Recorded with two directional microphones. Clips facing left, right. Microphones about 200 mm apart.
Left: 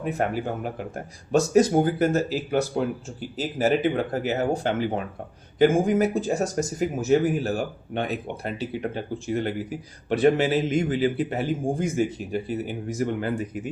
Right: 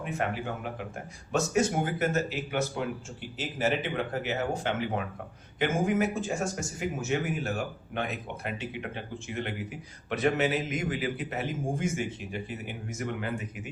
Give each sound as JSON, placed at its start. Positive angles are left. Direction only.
{"t": 0.0, "sound": "speech", "side_deg": 40}